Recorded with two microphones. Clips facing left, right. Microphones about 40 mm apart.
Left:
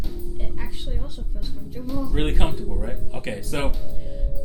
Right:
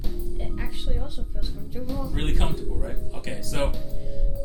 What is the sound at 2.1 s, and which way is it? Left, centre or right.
Speech, centre.